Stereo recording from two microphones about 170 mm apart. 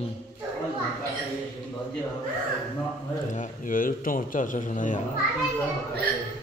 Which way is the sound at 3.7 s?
55° left (ahead or behind).